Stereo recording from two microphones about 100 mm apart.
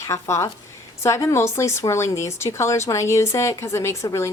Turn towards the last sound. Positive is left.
turn(degrees=30)  # may be behind; listen again after turning